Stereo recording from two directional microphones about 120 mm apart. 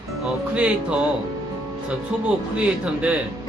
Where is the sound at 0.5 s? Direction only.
10° right (ahead or behind).